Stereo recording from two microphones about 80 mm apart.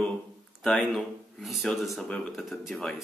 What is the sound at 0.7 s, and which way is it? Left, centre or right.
Speech, centre.